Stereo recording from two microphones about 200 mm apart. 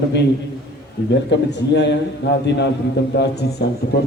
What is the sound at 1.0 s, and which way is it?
A man's voice, 55° left (ahead or behind).